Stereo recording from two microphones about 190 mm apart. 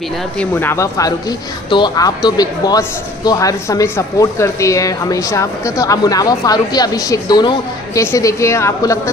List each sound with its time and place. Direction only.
0.4 s a man's voice: 10° left (ahead or behind)